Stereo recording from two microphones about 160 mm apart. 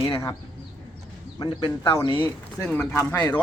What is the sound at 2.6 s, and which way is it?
Speech, 5° left (ahead or behind).